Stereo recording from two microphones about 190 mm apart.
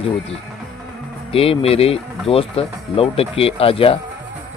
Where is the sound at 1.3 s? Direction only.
30° left (ahead or behind).